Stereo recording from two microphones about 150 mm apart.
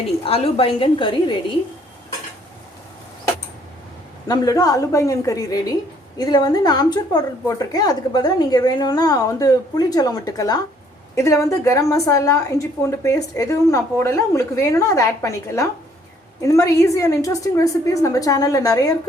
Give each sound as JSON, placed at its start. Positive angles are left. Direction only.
{"t": 0.2, "sound": "a woman's voice", "side_deg": 40}
{"t": 4.3, "sound": "a woman's voice", "side_deg": 25}